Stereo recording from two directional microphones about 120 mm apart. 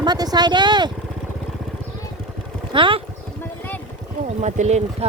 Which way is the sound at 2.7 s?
45° right (ahead or behind).